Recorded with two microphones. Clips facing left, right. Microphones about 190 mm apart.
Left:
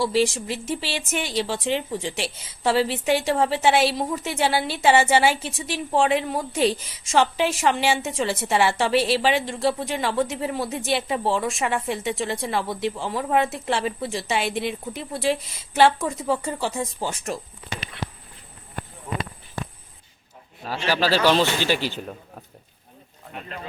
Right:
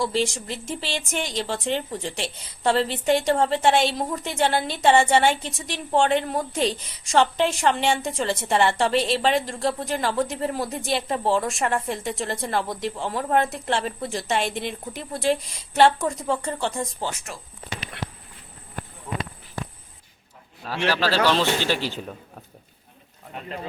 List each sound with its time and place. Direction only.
0.0 s speech: centre (ahead or behind)
17.2 s speech: 40° left (ahead or behind)
20.7 s a man's voice: 10° left (ahead or behind)